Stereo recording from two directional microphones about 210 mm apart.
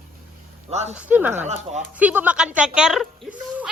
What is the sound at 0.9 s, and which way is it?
A woman's voice, 10° right (ahead or behind).